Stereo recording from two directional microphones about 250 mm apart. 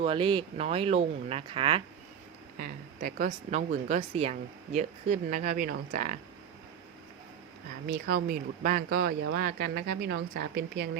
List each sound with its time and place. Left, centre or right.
0.0 s speech: right
2.6 s a woman's voice: right
7.9 s a woman's voice: right